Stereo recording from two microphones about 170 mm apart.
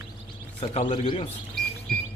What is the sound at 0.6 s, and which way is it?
Speech, 40° left (ahead or behind).